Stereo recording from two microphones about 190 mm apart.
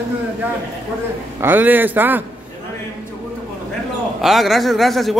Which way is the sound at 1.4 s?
10° right (ahead or behind).